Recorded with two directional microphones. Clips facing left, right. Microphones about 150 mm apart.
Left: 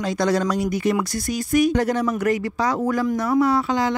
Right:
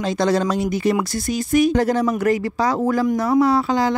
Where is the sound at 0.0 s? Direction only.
25° right (ahead or behind).